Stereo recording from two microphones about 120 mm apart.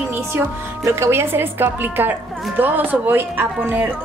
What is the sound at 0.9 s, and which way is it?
A woman's voice, 20° right (ahead or behind).